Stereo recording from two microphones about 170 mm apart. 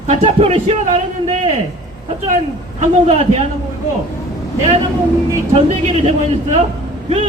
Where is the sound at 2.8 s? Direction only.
40° right (ahead or behind).